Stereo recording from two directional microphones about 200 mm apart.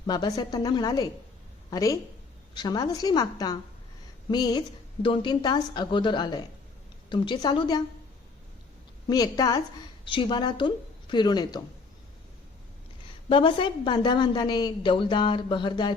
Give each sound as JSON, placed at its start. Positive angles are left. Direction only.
{"t": 0.1, "sound": "a woman's voice", "side_deg": 20}
{"t": 9.0, "sound": "a woman's voice", "side_deg": 20}
{"t": 13.2, "sound": "a woman's voice", "side_deg": 25}